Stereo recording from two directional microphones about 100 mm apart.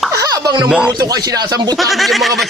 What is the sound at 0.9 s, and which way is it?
Speech, 40° right (ahead or behind).